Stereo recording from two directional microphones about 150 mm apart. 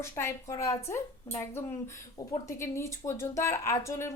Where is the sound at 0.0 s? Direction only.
20° left (ahead or behind).